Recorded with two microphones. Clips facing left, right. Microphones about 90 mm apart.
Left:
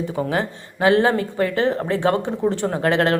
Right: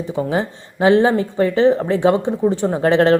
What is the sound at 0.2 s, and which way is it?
Speech, 20° right (ahead or behind).